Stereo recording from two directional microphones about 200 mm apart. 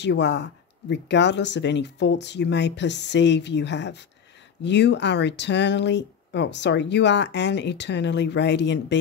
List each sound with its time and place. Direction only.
0.0 s speech: 60° left (ahead or behind)